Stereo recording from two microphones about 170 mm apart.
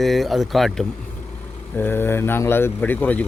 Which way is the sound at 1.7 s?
15° left (ahead or behind).